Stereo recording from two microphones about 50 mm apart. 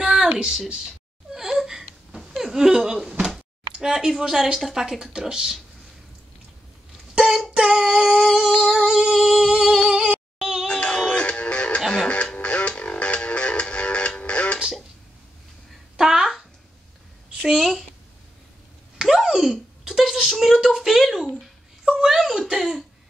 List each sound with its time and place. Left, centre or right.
0.0 s a sound: centre
1.3 s a sound: centre
4.6 s a child's voice: centre
7.5 s a child's voice: centre
8.5 s female singing: centre
10.7 s music: centre
16.0 s a child's voice: centre
17.5 s a woman's voice: centre
18.9 s a child's voice: centre
21.4 s a sound: centre
22.5 s a woman's voice: centre